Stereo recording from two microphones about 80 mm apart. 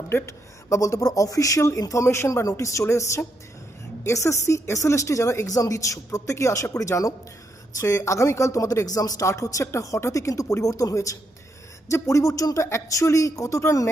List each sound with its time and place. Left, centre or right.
0.1 s speech: left